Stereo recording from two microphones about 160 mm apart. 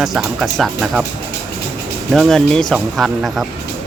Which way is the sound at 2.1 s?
Centre (ahead or behind).